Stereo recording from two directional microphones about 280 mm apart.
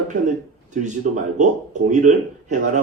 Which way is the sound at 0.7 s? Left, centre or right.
Right.